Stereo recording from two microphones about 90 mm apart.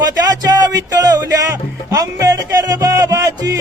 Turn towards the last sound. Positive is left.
turn(degrees=-40)  # may be behind; listen again after turning